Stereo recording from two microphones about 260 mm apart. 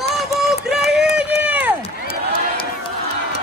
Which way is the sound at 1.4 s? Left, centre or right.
Centre.